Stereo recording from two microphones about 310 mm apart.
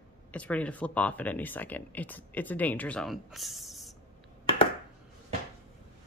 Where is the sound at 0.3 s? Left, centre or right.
Centre.